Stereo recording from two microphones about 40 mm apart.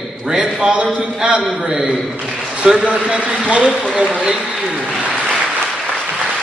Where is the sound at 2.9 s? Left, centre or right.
Right.